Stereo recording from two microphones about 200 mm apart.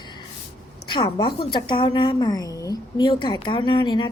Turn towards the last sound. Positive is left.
turn(degrees=25)  # may be behind; listen again after turning